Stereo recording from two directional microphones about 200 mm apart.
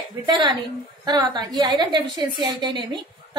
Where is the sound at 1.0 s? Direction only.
20° right (ahead or behind).